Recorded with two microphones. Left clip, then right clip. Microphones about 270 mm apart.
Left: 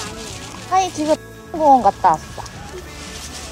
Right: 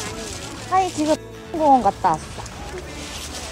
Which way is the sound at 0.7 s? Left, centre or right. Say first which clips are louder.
Left 2 dB; centre.